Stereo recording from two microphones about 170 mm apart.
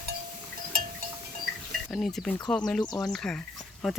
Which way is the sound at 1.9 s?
Centre (ahead or behind).